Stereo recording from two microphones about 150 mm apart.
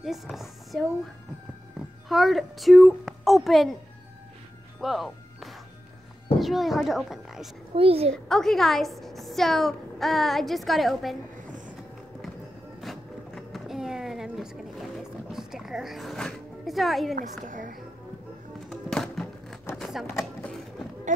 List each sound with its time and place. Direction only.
0.0 s a woman's voice: centre (ahead or behind)
2.0 s a child's voice: centre (ahead or behind)
4.7 s music: centre (ahead or behind)
6.4 s a woman's voice: centre (ahead or behind)
7.7 s a child's voice: 40° right (ahead or behind)
8.1 s a woman's voice: 5° left (ahead or behind)
12.8 s a sound: centre (ahead or behind)
17.1 s a woman's voice: 60° right (ahead or behind)
18.7 s music: centre (ahead or behind)
19.7 s a sound: centre (ahead or behind)